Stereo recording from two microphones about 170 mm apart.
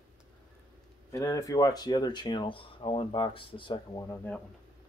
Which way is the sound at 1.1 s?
20° left (ahead or behind).